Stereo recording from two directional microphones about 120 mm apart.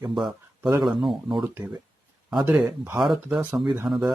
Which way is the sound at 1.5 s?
20° right (ahead or behind).